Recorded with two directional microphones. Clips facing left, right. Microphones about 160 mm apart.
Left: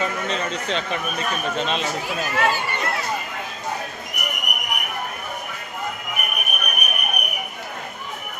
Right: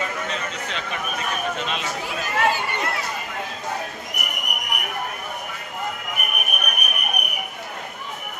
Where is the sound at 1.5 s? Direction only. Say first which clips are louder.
Left 4 dB; 30° left (ahead or behind).